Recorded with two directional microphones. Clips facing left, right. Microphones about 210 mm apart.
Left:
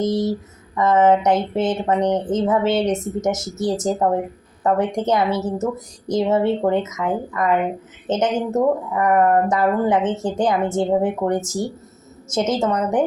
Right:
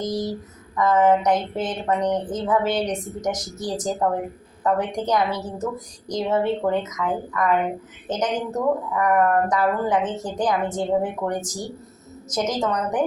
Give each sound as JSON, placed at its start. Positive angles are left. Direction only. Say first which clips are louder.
{"t": 0.0, "sound": "speech", "louder": "left 6 dB", "side_deg": 25}